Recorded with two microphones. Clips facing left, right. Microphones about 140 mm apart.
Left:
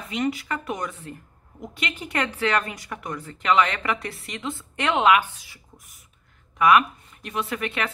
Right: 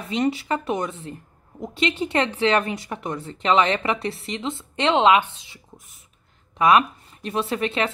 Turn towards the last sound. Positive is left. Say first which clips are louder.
# right 4 dB
turn(degrees=-30)  # may be behind; listen again after turning